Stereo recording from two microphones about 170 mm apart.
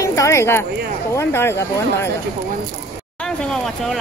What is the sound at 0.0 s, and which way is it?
Speech, 20° left (ahead or behind).